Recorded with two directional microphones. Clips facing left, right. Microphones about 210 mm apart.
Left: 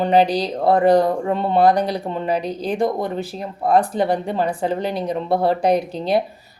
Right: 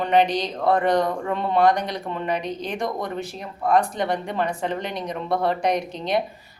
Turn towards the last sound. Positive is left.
turn(degrees=35)  # may be behind; listen again after turning